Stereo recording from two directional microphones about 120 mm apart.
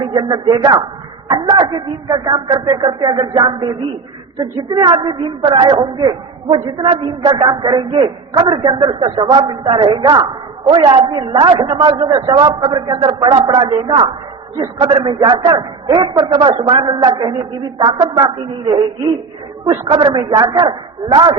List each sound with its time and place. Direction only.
0.0 s a woman's voice: 35° right (ahead or behind)
4.7 s a woman's voice: 40° right (ahead or behind)
19.6 s a woman's voice: 25° right (ahead or behind)
19.9 s a woman's voice: 40° right (ahead or behind)